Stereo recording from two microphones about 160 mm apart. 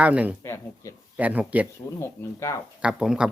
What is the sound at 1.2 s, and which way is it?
Speech, 10° right (ahead or behind).